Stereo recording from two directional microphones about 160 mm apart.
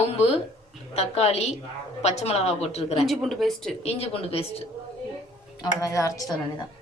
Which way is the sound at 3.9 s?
40° left (ahead or behind).